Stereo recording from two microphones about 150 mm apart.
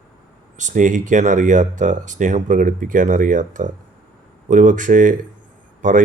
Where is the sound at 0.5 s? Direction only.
55° right (ahead or behind).